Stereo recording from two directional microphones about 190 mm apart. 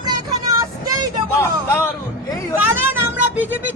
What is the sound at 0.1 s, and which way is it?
Vehicle, 20° right (ahead or behind).